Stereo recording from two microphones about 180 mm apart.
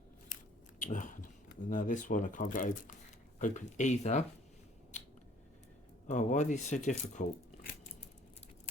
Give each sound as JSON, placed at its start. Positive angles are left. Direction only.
{"t": 0.8, "sound": "biting", "side_deg": 45}
{"t": 1.7, "sound": "speech", "side_deg": 45}
{"t": 6.1, "sound": "speech", "side_deg": 40}